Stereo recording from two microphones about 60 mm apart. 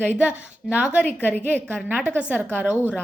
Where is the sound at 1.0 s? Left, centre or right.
Left.